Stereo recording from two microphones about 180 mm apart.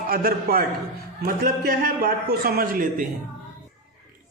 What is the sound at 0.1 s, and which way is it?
A man's voice, 55° right (ahead or behind).